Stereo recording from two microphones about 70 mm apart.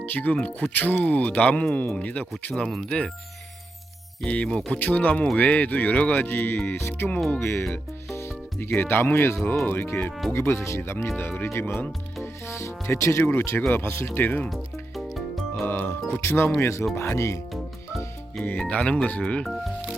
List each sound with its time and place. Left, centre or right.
0.0 s speech: left
4.3 s speech: centre; by 7.6 s left
7.7 s music: left
8.7 s speech: left
10.3 s speech: left
12.2 s music: left
13.2 s speech: left
13.6 s speech: left
13.8 s speech: left
14.2 s speech: left
14.5 s music: centre
15.6 s speech: left
18.4 s speech: left